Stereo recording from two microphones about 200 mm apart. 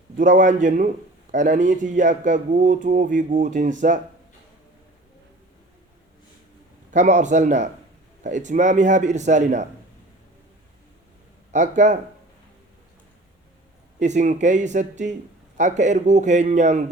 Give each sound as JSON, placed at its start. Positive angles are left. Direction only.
{"t": 0.2, "sound": "speech", "side_deg": -40}
{"t": 6.9, "sound": "speech", "side_deg": -35}
{"t": 11.5, "sound": "speech", "side_deg": -40}
{"t": 14.0, "sound": "speech", "side_deg": -35}